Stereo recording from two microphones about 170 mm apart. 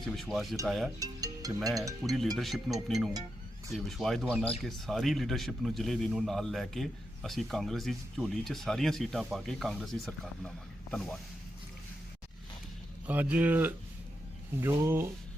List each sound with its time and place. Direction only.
0.0 s speech: centre (ahead or behind)
0.9 s music: 20° right (ahead or behind)
1.7 s speech: 20° right (ahead or behind)
2.3 s speech: centre (ahead or behind)
13.1 s speech: 10° right (ahead or behind)